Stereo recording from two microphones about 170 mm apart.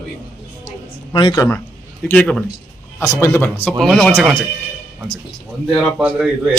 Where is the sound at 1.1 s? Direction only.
25° left (ahead or behind).